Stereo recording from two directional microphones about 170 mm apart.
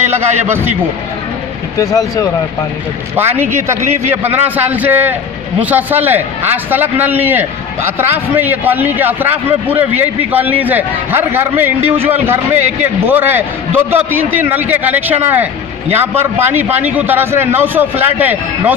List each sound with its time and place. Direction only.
0.0 s a man's voice: 15° right (ahead or behind)
1.8 s speech: 20° left (ahead or behind)
3.2 s a man's voice: 15° right (ahead or behind)